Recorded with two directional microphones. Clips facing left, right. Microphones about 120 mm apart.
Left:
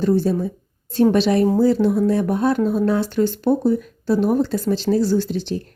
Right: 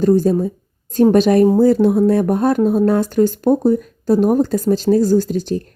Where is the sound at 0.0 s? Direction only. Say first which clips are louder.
Right 5 dB; 45° right (ahead or behind).